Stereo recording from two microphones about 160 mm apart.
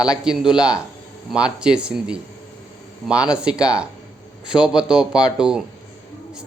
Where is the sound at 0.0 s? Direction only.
5° right (ahead or behind).